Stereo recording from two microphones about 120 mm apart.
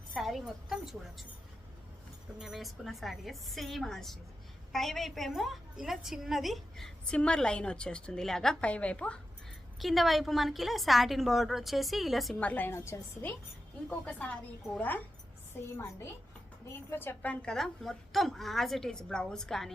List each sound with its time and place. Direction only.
0.1 s a woman's voice: centre (ahead or behind)
2.4 s a woman's voice: centre (ahead or behind)
12.4 s a woman's voice: 15° left (ahead or behind)
14.0 s a woman's voice: 10° left (ahead or behind)
16.9 s a woman's voice: 20° left (ahead or behind)
17.4 s a woman's voice: 5° left (ahead or behind)